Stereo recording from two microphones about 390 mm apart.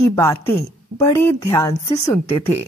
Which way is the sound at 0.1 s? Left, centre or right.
Centre.